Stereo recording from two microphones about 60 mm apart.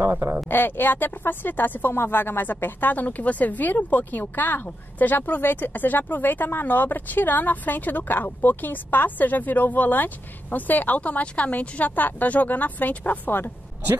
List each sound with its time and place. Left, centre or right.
0.0 s speech: right
0.5 s speech: left